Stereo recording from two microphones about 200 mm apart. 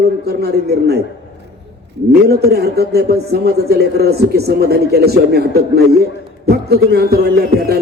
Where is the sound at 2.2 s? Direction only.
50° right (ahead or behind).